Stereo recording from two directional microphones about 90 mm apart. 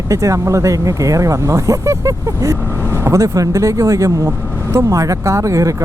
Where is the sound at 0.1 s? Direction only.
35° right (ahead or behind).